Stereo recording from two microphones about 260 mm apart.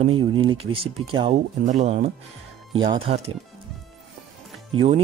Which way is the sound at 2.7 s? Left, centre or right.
Centre.